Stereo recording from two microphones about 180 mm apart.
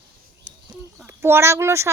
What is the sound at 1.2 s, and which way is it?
Speech, 15° right (ahead or behind).